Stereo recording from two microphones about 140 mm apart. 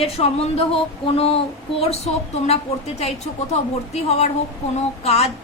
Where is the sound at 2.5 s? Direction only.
50° left (ahead or behind).